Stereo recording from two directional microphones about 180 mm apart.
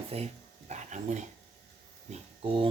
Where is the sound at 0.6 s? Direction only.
40° right (ahead or behind).